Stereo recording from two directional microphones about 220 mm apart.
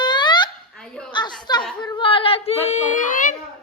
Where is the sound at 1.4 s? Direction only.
20° left (ahead or behind).